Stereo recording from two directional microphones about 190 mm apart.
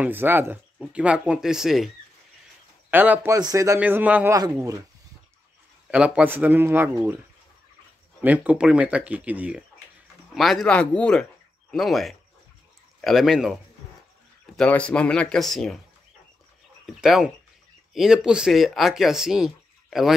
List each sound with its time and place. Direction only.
0.0 s speech: 10° right (ahead or behind)
2.9 s speech: 10° right (ahead or behind)
5.9 s speech: 5° right (ahead or behind)
8.2 s speech: 10° right (ahead or behind)
14.6 s speech: 5° left (ahead or behind)
16.8 s speech: centre (ahead or behind)